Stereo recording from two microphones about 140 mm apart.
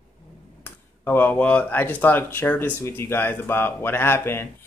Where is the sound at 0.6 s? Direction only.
15° left (ahead or behind).